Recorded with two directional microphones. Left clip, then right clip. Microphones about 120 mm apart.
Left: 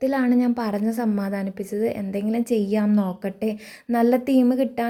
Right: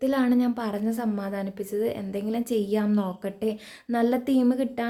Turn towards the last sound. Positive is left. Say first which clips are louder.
# left 4 dB
turn(degrees=30)  # may be behind; listen again after turning